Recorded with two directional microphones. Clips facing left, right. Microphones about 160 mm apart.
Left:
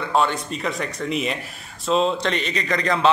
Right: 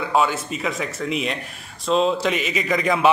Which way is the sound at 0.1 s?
5° right (ahead or behind).